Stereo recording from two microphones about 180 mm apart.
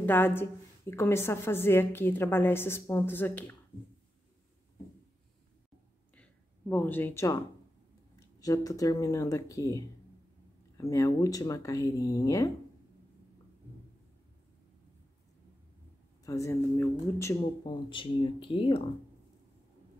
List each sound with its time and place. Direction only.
0.0 s a woman's voice: 10° left (ahead or behind)
6.7 s a woman's voice: 10° left (ahead or behind)
8.4 s speech: 20° left (ahead or behind)
16.3 s a woman's voice: 15° left (ahead or behind)
17.9 s speech: 30° left (ahead or behind)